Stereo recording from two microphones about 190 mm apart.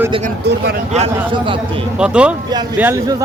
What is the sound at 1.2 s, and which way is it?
Speech, 25° right (ahead or behind).